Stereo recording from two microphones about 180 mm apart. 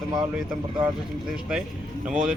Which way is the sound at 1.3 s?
5° right (ahead or behind).